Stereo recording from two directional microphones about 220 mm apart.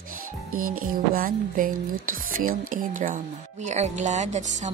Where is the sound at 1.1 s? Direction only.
40° right (ahead or behind).